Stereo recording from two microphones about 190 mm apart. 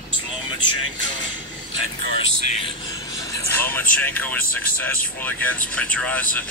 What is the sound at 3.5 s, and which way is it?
Speech, 10° left (ahead or behind).